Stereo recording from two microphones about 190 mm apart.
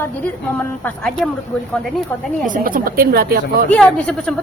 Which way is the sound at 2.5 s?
50° right (ahead or behind).